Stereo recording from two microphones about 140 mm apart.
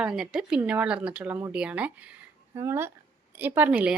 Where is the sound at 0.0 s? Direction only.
Centre (ahead or behind).